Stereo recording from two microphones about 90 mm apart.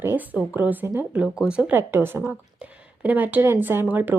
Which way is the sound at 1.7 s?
25° right (ahead or behind).